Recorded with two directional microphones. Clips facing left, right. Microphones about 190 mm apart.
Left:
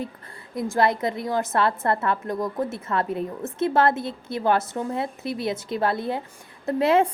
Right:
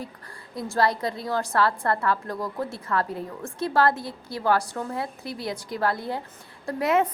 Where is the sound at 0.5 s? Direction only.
20° left (ahead or behind).